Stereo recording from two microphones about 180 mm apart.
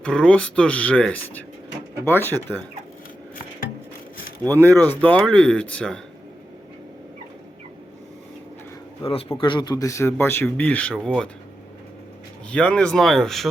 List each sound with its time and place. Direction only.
0.0 s speech: 5° left (ahead or behind)
4.8 s speech: 10° left (ahead or behind)
9.3 s speech: 25° left (ahead or behind); by 11.3 s 5° left (ahead or behind)
12.5 s speech: 5° left (ahead or behind)